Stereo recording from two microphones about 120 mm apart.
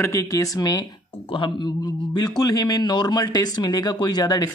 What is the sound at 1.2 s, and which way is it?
A man's voice, 45° left (ahead or behind).